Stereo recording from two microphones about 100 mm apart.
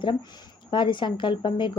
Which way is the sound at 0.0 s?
55° left (ahead or behind).